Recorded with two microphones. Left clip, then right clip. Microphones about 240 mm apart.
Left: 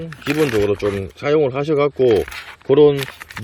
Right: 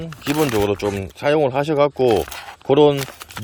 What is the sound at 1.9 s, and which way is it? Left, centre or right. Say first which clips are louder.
Speech: left 2 dB; right.